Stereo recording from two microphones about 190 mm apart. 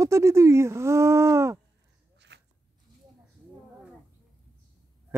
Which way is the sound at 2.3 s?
60° right (ahead or behind).